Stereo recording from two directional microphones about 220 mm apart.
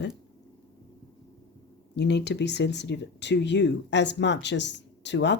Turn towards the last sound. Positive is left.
turn(degrees=55)  # may be behind; listen again after turning